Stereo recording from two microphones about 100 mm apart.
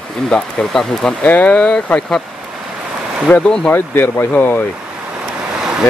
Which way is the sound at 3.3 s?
10° left (ahead or behind).